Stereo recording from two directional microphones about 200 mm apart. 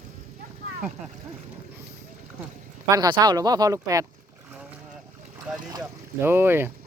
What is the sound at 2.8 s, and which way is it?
Speech, 15° right (ahead or behind).